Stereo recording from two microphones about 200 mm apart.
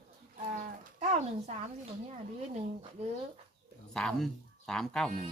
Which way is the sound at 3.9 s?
5° left (ahead or behind).